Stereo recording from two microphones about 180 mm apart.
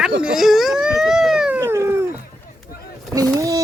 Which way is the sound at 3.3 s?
20° right (ahead or behind).